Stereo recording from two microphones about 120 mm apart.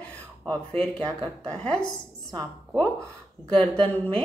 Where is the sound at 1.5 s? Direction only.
10° left (ahead or behind).